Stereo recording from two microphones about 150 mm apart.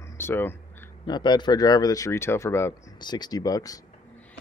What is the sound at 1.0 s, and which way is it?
Speech, 30° left (ahead or behind).